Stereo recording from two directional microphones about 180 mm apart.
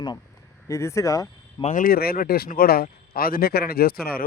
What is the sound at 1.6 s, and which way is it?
Speech, 50° left (ahead or behind).